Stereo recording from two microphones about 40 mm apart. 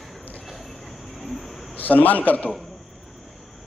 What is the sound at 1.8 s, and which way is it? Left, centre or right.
Speech, left.